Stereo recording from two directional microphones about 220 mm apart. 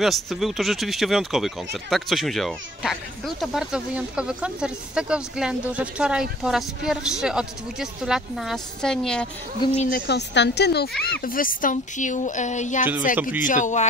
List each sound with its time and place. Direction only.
0.0 s speech: centre (ahead or behind)
9.8 s speech: 45° left (ahead or behind)
13.1 s a man's voice: 5° right (ahead or behind)
13.4 s speech: 35° left (ahead or behind)